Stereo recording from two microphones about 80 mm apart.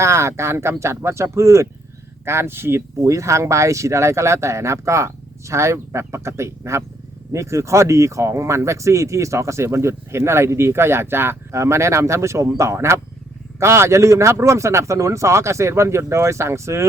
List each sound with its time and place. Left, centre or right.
0.0 s speech: right